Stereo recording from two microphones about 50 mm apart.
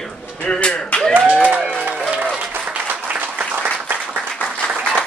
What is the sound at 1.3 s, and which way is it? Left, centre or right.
Speech, centre.